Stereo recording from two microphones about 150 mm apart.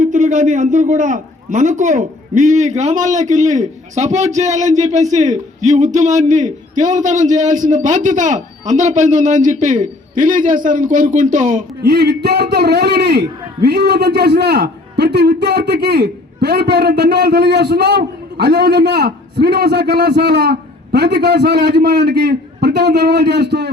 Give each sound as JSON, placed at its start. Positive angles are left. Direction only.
{"t": 0.0, "sound": "a man's voice", "side_deg": -55}
{"t": 11.8, "sound": "a man's voice", "side_deg": -90}